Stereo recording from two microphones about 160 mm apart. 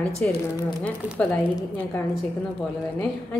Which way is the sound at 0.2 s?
10° left (ahead or behind).